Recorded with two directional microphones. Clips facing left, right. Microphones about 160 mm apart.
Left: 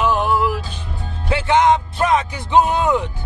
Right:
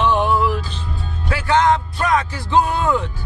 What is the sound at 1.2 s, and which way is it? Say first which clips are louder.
Speech: left 1 dB; 20° left (ahead or behind).